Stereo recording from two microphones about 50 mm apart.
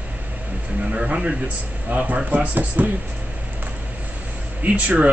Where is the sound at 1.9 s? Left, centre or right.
Right.